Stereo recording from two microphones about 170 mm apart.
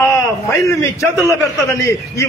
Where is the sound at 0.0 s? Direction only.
15° left (ahead or behind).